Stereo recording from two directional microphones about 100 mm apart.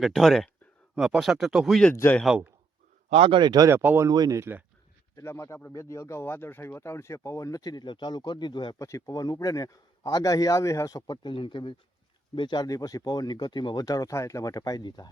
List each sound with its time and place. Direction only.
0.0 s speech: centre (ahead or behind)
1.9 s speech: 20° left (ahead or behind)
2.2 s a man's voice: 10° right (ahead or behind)
3.1 s speech: 85° right
3.3 s speech: 45° right (ahead or behind)
3.7 s speech: 25° right (ahead or behind)
4.1 s speech: 45° right (ahead or behind)
4.4 s speech: 20° right (ahead or behind)
5.1 s speech: 30° left (ahead or behind); by 8.7 s 50° left (ahead or behind)
8.8 s speech: 30° left (ahead or behind)
11.2 s speech: 55° left (ahead or behind)
12.6 s speech: 35° left (ahead or behind)